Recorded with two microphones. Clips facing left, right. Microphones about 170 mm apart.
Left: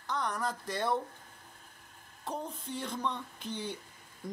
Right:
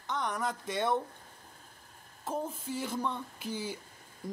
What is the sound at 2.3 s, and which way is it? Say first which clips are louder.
Speech: right 3 dB; 5° right (ahead or behind).